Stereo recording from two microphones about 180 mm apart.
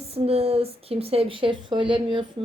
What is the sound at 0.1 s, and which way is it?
A woman's voice, 35° right (ahead or behind).